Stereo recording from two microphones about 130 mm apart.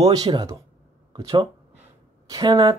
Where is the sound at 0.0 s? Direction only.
30° right (ahead or behind).